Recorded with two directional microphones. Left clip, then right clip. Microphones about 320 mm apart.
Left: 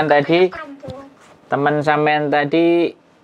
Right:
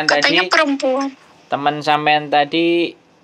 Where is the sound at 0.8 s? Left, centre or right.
Right.